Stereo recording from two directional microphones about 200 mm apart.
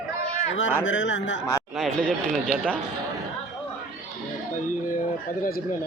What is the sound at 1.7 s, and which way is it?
Speech, centre (ahead or behind).